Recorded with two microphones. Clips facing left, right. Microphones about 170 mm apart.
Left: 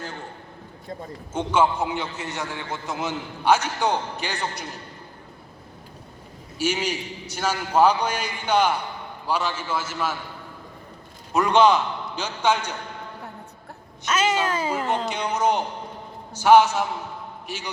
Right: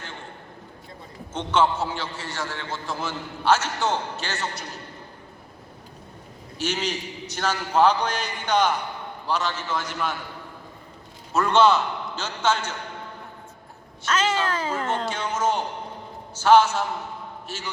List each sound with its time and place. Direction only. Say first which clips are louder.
1.3 s a man's voice: left 1 dB; 10° left (ahead or behind)
6.6 s a man's voice: left 2 dB; 10° left (ahead or behind)
11.3 s a man's voice: left 1 dB; 15° left (ahead or behind)
14.0 s a man's voice: left 1 dB; 10° left (ahead or behind)